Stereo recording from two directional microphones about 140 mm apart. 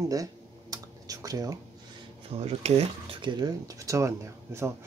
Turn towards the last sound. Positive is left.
turn(degrees=-20)  # may be behind; listen again after turning